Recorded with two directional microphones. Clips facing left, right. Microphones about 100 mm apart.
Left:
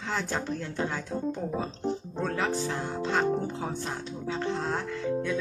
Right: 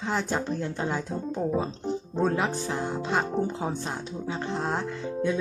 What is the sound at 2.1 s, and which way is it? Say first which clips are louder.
Speech: right 6 dB; 20° right (ahead or behind).